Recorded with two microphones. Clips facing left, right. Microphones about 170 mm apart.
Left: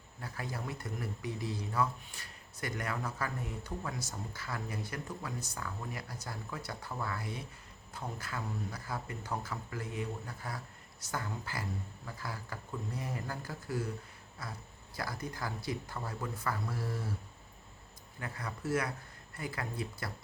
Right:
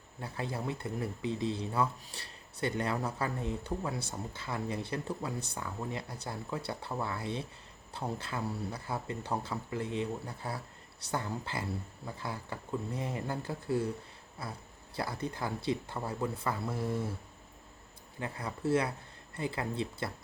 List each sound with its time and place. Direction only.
0.2 s speech: 25° right (ahead or behind)
18.2 s speech: 30° right (ahead or behind)